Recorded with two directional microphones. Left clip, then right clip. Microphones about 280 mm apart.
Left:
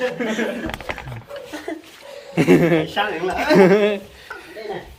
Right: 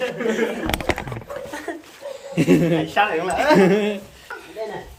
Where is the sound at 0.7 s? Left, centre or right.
Right.